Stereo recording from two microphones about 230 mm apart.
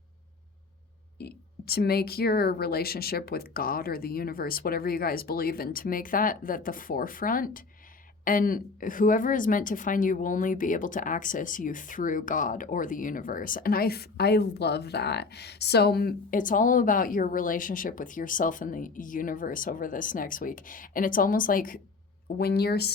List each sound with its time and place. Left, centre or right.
1.2 s a woman's voice: left